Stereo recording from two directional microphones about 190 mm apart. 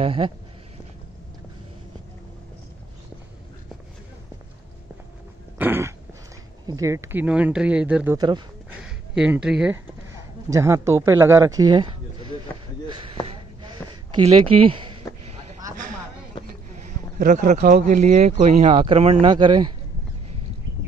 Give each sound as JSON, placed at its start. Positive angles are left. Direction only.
{"t": 0.0, "sound": "speech", "side_deg": -25}
{"t": 5.6, "sound": "a sound", "side_deg": -10}
{"t": 6.7, "sound": "speech", "side_deg": -15}
{"t": 10.5, "sound": "speech", "side_deg": -15}
{"t": 14.1, "sound": "speech", "side_deg": -30}
{"t": 16.3, "sound": "a sound", "side_deg": 25}
{"t": 16.7, "sound": "speech", "side_deg": -45}